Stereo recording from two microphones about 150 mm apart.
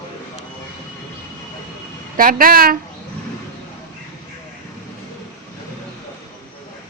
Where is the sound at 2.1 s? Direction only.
70° right (ahead or behind).